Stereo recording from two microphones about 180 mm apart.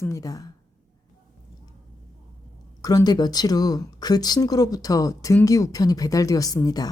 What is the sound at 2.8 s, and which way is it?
Speech, 20° left (ahead or behind).